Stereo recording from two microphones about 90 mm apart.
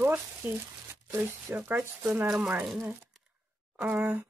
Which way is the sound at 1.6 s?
20° right (ahead or behind).